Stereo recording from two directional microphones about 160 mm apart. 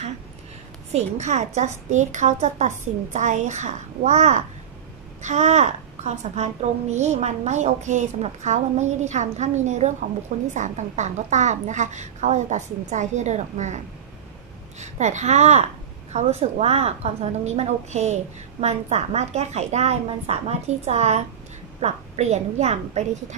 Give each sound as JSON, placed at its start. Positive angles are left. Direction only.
{"t": 0.9, "sound": "a woman's voice", "side_deg": -45}
{"t": 14.8, "sound": "a woman's voice", "side_deg": -45}